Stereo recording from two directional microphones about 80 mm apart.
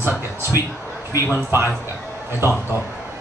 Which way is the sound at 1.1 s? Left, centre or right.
Right.